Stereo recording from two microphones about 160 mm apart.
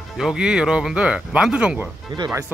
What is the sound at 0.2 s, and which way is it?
Speech, 5° right (ahead or behind).